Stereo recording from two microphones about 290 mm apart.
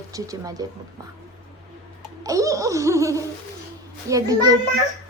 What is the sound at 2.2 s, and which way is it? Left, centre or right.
Baby laughter, centre.